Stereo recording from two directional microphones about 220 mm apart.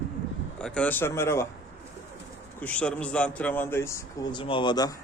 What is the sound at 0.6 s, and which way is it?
Speech, 5° left (ahead or behind).